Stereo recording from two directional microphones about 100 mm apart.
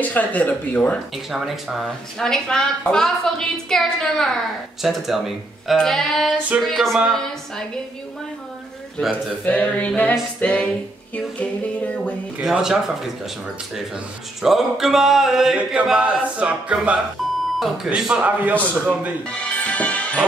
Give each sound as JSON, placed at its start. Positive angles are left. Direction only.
{"t": 0.0, "sound": "mantra", "side_deg": 15}
{"t": 1.1, "sound": "speech", "side_deg": 0}
{"t": 9.1, "sound": "mantra", "side_deg": 15}
{"t": 12.4, "sound": "speech", "side_deg": -5}
{"t": 14.4, "sound": "a sound", "side_deg": -5}
{"t": 17.2, "sound": "beep", "side_deg": 0}
{"t": 17.8, "sound": "a sound", "side_deg": -10}
{"t": 19.6, "sound": "music", "side_deg": 15}